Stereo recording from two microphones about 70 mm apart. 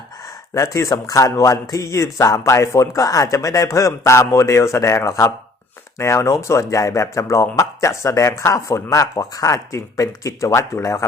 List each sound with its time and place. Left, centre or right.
0.5 s speech: left